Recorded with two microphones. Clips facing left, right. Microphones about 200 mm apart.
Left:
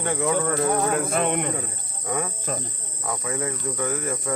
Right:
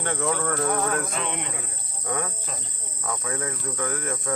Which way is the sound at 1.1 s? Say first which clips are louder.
Left 8 dB; 50° left (ahead or behind).